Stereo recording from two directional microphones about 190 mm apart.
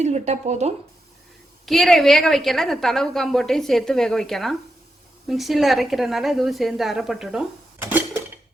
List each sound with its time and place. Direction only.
0.0 s speech: 35° right (ahead or behind)
1.6 s a woman's voice: centre (ahead or behind)
7.9 s a sound: 10° right (ahead or behind)